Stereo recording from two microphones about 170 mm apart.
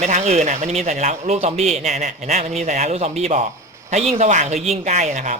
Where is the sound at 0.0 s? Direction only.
40° right (ahead or behind).